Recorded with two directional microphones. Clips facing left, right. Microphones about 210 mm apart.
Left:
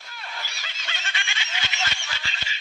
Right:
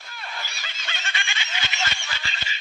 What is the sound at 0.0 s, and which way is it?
Snicker, 50° right (ahead or behind).